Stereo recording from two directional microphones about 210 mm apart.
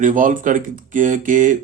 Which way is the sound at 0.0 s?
40° right (ahead or behind).